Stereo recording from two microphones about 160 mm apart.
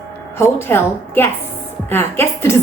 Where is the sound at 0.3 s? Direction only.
15° left (ahead or behind).